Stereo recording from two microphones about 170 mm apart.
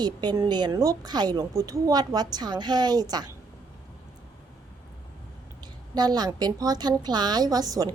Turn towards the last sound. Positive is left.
turn(degrees=-20)  # may be behind; listen again after turning